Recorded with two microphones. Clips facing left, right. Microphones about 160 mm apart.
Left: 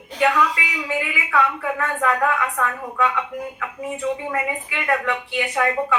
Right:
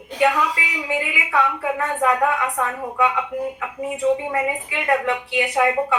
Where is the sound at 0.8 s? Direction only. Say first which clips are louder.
Right 1 dB; 20° right (ahead or behind).